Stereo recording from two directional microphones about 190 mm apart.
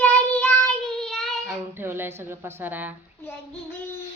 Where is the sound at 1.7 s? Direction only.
10° right (ahead or behind).